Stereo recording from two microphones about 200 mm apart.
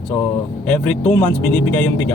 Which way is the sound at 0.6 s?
5° left (ahead or behind).